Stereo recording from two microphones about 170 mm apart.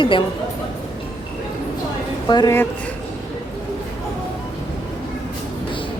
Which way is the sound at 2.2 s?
25° left (ahead or behind).